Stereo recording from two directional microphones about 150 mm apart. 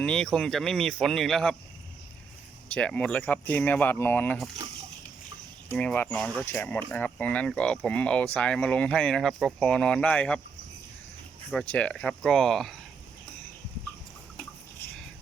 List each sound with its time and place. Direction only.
0.0 s speech: 5° left (ahead or behind)
2.7 s speech: 5° left (ahead or behind)
5.7 s speech: 10° left (ahead or behind)
11.6 s speech: 10° left (ahead or behind)